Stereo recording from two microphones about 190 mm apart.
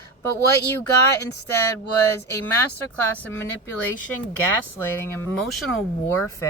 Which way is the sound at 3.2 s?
10° left (ahead or behind).